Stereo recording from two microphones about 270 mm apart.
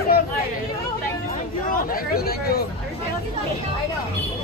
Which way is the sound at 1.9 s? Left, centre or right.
Left.